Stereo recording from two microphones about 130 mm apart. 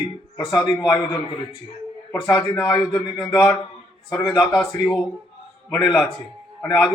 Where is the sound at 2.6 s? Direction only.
10° left (ahead or behind).